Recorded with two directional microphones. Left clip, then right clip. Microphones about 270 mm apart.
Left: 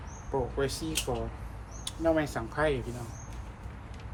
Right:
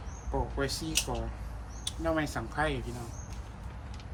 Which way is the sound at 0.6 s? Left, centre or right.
Centre.